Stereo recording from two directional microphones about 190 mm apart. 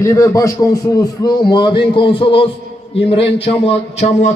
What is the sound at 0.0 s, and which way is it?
A man's voice, 15° left (ahead or behind).